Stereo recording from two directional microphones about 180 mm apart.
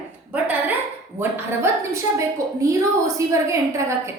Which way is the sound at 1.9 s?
15° right (ahead or behind).